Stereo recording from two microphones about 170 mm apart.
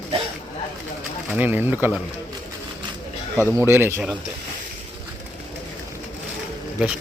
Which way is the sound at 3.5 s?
15° right (ahead or behind).